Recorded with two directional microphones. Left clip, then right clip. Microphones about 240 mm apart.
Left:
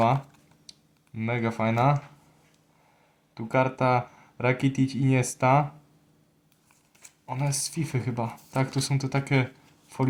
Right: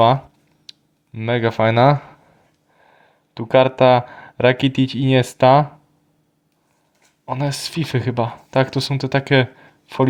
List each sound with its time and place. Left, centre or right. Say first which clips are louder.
0.7 s speech: right 8 dB; right
3.3 s speech: right 11 dB; right
7.3 s speech: right 8 dB; right